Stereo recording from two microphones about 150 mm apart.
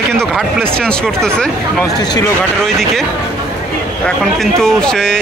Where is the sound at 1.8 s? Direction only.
25° left (ahead or behind).